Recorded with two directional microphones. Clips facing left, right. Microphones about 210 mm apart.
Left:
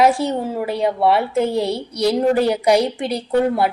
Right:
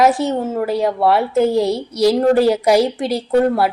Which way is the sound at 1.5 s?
30° left (ahead or behind).